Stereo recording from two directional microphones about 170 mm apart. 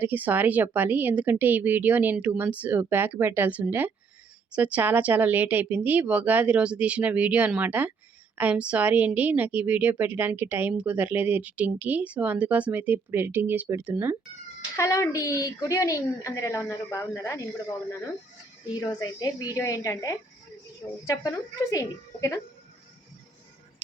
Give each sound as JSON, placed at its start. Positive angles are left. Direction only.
{"t": 0.0, "sound": "speech", "side_deg": -10}
{"t": 14.8, "sound": "a woman's voice", "side_deg": 15}
{"t": 18.8, "sound": "a woman's voice", "side_deg": 20}